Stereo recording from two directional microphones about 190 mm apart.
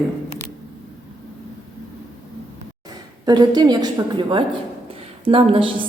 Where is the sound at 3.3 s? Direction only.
20° right (ahead or behind).